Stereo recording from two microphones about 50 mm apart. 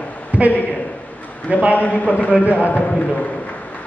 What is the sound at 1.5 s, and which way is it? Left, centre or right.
Speech, right.